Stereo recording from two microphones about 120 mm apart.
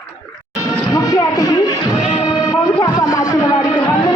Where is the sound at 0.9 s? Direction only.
30° left (ahead or behind).